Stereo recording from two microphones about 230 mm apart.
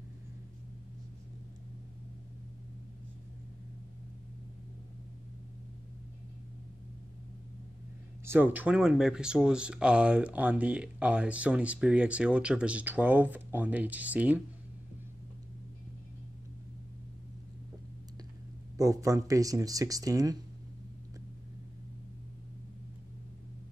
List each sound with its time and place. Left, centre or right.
8.3 s speech: centre
18.8 s speech: centre